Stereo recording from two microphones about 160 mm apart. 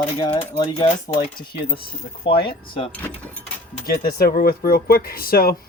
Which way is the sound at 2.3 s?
35° left (ahead or behind).